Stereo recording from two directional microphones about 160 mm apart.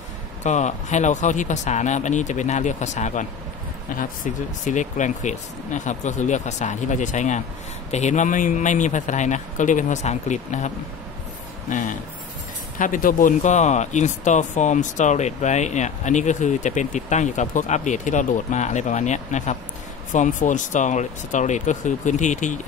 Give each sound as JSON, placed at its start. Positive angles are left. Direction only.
{"t": 0.4, "sound": "speech", "side_deg": 50}
{"t": 11.7, "sound": "speech", "side_deg": 55}